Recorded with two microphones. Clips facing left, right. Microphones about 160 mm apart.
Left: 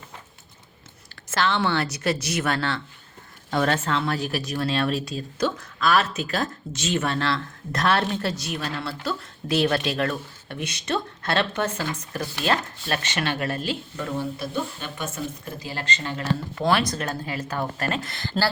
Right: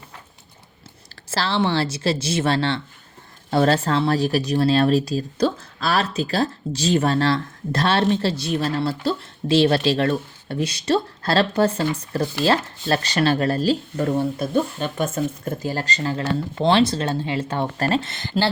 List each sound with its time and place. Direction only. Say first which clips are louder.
1.1 s speech: right 1 dB; 35° right (ahead or behind)